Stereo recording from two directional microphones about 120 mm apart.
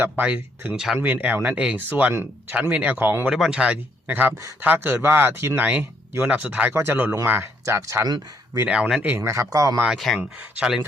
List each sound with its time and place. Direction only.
0.0 s speech: 15° right (ahead or behind)
3.2 s speech: 5° right (ahead or behind); by 8.0 s 25° right (ahead or behind)
8.5 s speech: 10° right (ahead or behind); by 9.8 s 30° right (ahead or behind)
9.8 s speech: centre (ahead or behind)